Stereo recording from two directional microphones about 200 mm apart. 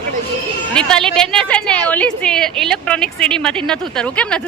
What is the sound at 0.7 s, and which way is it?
A woman's voice, 5° left (ahead or behind).